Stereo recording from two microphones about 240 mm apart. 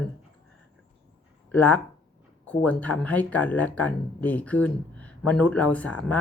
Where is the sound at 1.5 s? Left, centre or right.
Centre.